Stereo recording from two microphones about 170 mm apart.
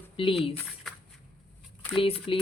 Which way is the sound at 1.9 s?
30° left (ahead or behind).